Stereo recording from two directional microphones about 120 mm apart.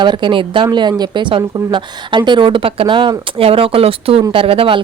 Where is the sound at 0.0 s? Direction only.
40° right (ahead or behind).